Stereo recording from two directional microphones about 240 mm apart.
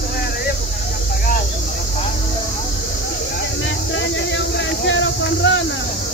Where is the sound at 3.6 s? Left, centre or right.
Left.